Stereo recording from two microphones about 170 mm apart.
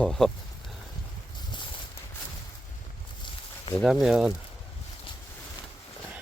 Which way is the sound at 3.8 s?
Centre (ahead or behind).